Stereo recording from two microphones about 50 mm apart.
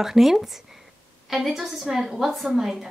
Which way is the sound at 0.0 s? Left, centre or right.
Centre.